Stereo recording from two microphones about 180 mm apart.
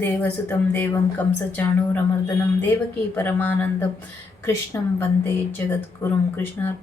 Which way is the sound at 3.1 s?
10° left (ahead or behind).